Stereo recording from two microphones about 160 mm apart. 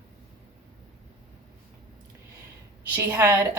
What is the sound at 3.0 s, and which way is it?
Speech, 15° right (ahead or behind).